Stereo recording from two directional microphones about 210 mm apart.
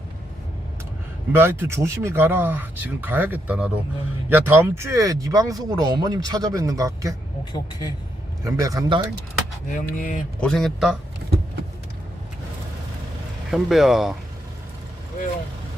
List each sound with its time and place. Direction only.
1.4 s speech: 15° right (ahead or behind)
7.5 s speech: 20° left (ahead or behind)
8.4 s speech: 15° right (ahead or behind)
9.6 s speech: 40° left (ahead or behind)
10.4 s speech: centre (ahead or behind)
13.5 s speech: centre (ahead or behind)